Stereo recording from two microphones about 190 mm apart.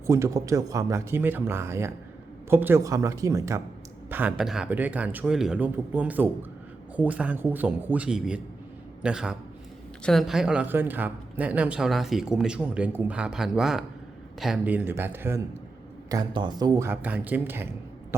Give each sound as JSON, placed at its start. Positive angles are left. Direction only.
{"t": 0.1, "sound": "a man's voice", "side_deg": -15}